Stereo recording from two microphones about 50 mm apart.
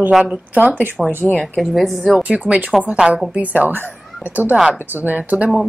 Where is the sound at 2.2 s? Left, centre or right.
Right.